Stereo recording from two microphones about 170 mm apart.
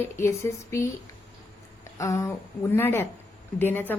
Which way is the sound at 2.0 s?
20° left (ahead or behind).